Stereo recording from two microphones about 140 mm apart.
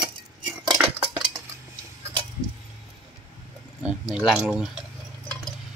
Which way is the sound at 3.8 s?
5° right (ahead or behind).